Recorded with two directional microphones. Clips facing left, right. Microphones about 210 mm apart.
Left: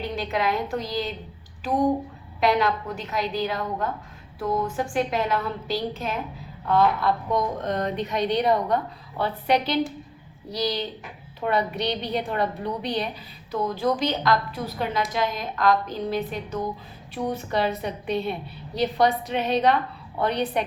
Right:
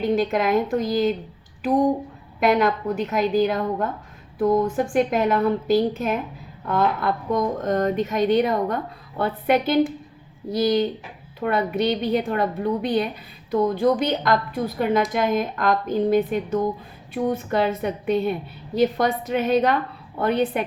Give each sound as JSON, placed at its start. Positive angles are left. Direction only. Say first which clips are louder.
{"t": 0.0, "sound": "a woman's voice", "louder": "right 6 dB", "side_deg": -45}
{"t": 2.4, "sound": "speech", "louder": "right 3 dB", "side_deg": -45}